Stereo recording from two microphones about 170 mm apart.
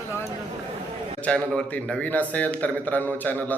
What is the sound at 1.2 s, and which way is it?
A man's voice, 5° left (ahead or behind).